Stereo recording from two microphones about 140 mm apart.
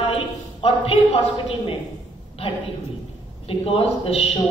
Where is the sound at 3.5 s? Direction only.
40° left (ahead or behind).